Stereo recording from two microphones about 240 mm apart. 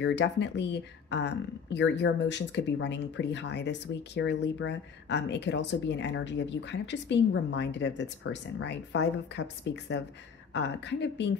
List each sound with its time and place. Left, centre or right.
0.0 s speech: left